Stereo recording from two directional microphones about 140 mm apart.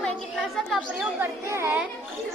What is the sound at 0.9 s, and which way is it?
Speech, 10° right (ahead or behind).